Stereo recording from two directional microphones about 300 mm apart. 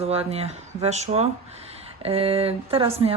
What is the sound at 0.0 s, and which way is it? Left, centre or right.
Speech, centre.